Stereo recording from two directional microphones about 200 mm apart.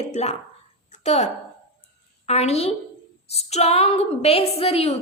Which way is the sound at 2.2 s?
30° left (ahead or behind).